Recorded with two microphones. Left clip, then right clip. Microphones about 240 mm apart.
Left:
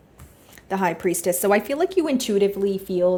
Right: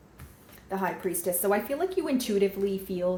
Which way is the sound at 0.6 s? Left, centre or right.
Left.